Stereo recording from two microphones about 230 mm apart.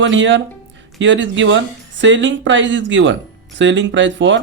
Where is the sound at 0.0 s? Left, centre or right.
Right.